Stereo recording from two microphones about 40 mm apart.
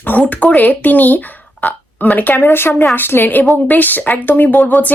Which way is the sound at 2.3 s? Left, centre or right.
Left.